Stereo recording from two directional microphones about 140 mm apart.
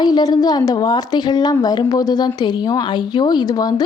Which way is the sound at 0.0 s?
30° left (ahead or behind).